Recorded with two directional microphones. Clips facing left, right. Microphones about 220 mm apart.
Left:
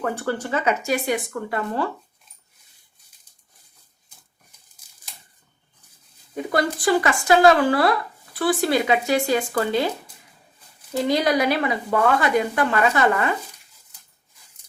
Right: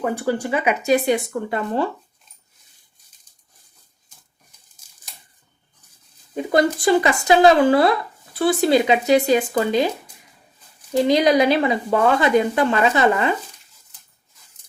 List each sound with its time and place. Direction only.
0.0 s speech: 15° right (ahead or behind)
6.3 s speech: 25° right (ahead or behind)
10.9 s speech: 20° right (ahead or behind)